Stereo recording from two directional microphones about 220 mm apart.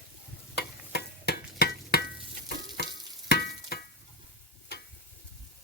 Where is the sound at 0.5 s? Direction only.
50° left (ahead or behind).